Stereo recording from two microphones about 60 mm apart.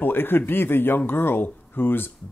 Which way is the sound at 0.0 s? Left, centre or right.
Left.